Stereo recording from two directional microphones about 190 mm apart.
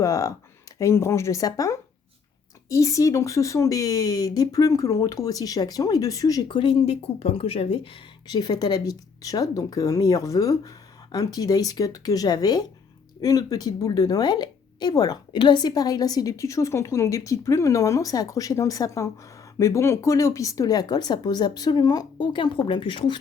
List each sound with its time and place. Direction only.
0.0 s speech: 15° left (ahead or behind)